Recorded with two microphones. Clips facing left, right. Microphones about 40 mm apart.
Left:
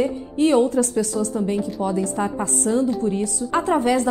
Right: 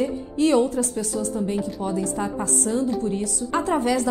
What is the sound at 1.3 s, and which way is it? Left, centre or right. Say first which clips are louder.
A woman's voice: left 3 dB; left.